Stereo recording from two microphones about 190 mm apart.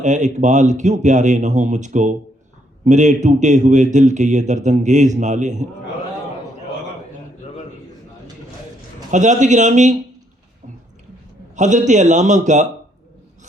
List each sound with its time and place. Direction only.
0.0 s a man's voice: 40° right (ahead or behind)
9.1 s a man's voice: 40° right (ahead or behind)
11.5 s a man's voice: 40° right (ahead or behind)